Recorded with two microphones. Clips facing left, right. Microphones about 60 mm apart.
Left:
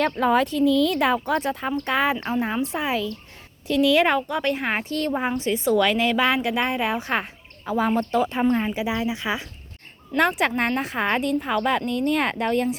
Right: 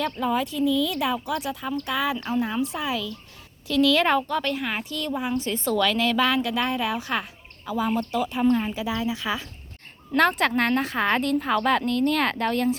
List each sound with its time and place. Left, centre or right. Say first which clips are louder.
0.0 s a woman's voice: left 5 dB; left
5.3 s a woman's voice: left 3 dB; left
8.5 s a woman's voice: left 2 dB; left